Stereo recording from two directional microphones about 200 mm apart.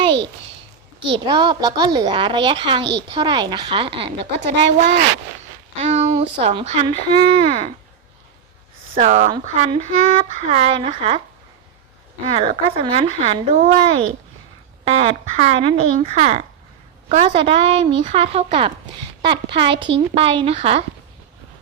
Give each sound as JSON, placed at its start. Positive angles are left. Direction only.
{"t": 0.0, "sound": "a sound", "side_deg": -25}
{"t": 1.0, "sound": "a woman's voice", "side_deg": -25}
{"t": 4.2, "sound": "speech", "side_deg": -60}
{"t": 5.8, "sound": "a sound", "side_deg": -30}
{"t": 6.4, "sound": "a woman's voice", "side_deg": -30}
{"t": 9.0, "sound": "a woman's voice", "side_deg": -35}
{"t": 12.2, "sound": "a woman's voice", "side_deg": -30}
{"t": 19.8, "sound": "a woman's voice", "side_deg": -25}